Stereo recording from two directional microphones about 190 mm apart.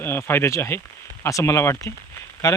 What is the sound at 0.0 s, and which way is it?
Speech, 10° left (ahead or behind).